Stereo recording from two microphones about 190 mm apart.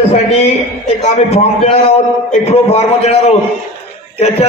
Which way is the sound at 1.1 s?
35° left (ahead or behind).